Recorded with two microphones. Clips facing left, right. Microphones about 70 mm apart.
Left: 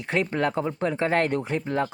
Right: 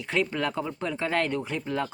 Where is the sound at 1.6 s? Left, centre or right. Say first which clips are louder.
Left 3 dB; left.